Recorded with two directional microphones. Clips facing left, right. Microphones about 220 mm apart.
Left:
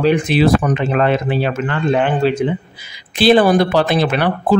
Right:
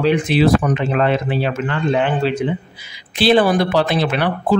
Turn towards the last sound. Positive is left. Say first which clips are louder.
# left 2 dB
turn(degrees=45)  # may be behind; listen again after turning